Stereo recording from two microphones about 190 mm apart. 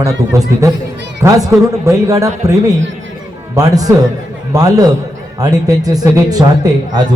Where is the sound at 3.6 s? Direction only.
20° right (ahead or behind).